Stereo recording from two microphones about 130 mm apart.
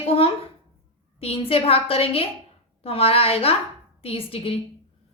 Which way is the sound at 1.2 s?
45° left (ahead or behind).